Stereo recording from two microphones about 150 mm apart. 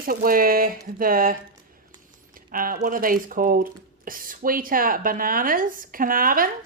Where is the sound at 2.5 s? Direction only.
70° right (ahead or behind).